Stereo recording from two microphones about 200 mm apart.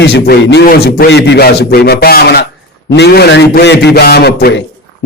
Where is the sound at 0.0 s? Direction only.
55° left (ahead or behind).